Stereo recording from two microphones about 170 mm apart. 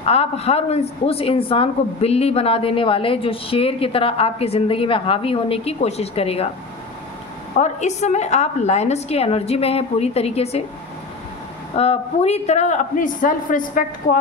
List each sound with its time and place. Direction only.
0.0 s a woman's voice: 35° left (ahead or behind)
7.5 s a woman's voice: 40° left (ahead or behind)
11.7 s a man's voice: 35° left (ahead or behind); by 13.8 s 50° left (ahead or behind)